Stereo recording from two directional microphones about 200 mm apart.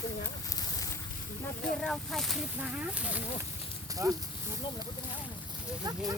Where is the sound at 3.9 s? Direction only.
15° right (ahead or behind).